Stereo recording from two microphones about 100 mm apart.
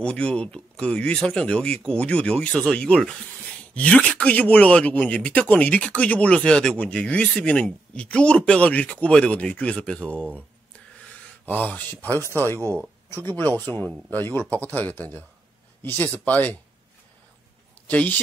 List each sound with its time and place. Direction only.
0.0 s speech: 10° left (ahead or behind)
11.4 s speech: 20° left (ahead or behind)
17.8 s speech: 15° left (ahead or behind)